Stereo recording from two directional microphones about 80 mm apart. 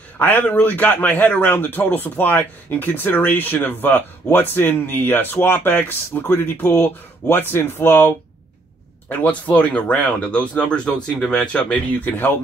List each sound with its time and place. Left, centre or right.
0.2 s a man's voice: left